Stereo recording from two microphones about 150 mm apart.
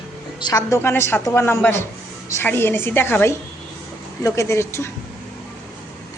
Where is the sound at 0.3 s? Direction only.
25° left (ahead or behind).